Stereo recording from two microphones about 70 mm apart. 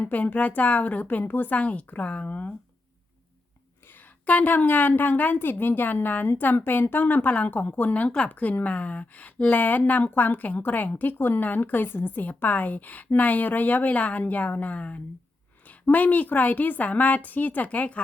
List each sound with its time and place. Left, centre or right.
0.0 s a woman's voice: left
3.8 s a woman's voice: left